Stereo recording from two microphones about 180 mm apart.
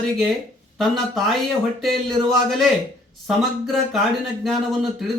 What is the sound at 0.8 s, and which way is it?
Speech, centre (ahead or behind).